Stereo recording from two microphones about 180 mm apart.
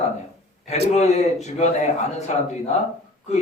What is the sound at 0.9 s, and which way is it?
Speech, 40° left (ahead or behind).